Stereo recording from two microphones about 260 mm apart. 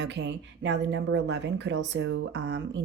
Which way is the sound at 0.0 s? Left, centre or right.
Right.